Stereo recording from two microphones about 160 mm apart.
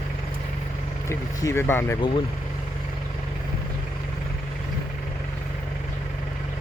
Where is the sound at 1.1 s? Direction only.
15° left (ahead or behind).